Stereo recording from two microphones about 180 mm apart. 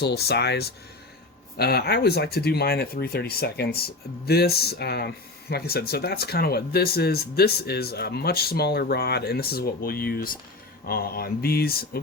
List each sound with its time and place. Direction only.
0.0 s speech: 65° left (ahead or behind)